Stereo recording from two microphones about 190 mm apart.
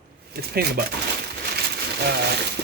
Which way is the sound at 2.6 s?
60° right (ahead or behind).